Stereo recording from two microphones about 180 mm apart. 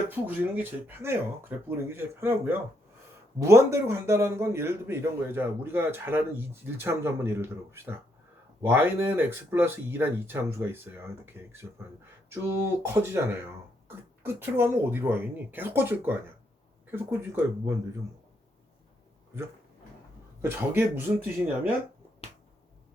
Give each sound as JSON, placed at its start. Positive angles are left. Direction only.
{"t": 0.1, "sound": "a man's voice", "side_deg": -10}
{"t": 20.4, "sound": "a man's voice", "side_deg": -15}
{"t": 22.2, "sound": "finger snapping", "side_deg": 35}